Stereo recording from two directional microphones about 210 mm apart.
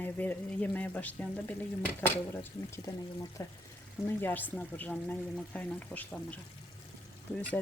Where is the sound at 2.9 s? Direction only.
15° left (ahead or behind).